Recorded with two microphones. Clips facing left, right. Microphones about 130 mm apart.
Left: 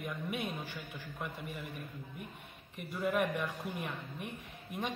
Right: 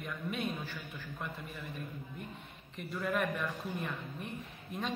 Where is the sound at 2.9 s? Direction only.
10° left (ahead or behind).